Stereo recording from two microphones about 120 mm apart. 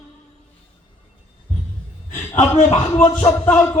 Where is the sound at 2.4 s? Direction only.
80° left.